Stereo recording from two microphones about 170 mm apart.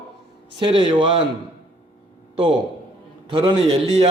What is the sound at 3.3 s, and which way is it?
Speech, 30° right (ahead or behind).